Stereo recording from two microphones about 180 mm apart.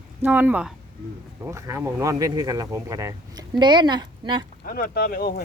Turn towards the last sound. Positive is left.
turn(degrees=55)  # may be behind; listen again after turning